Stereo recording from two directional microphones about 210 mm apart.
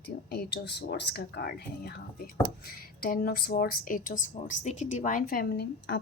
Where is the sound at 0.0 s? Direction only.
50° left (ahead or behind).